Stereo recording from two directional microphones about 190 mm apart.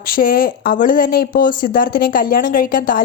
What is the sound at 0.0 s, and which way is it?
A woman's voice, 50° left (ahead or behind).